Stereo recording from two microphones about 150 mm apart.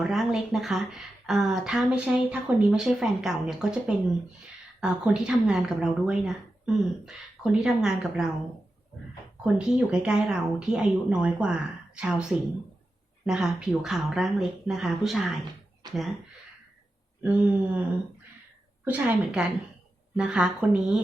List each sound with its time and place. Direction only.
0.0 s a woman's voice: 5° right (ahead or behind)
9.4 s a woman's voice: 5° right (ahead or behind)
13.2 s a woman's voice: 5° right (ahead or behind)
15.8 s a sound: 25° right (ahead or behind)
17.2 s speech: 10° right (ahead or behind)
18.9 s a woman's voice: 5° right (ahead or behind)